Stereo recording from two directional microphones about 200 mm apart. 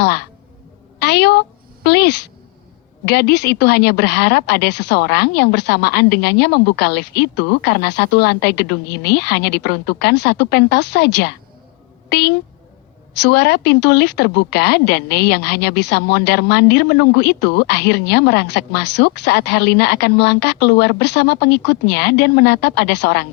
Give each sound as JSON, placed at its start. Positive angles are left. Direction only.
{"t": 0.0, "sound": "a woman's voice", "side_deg": 55}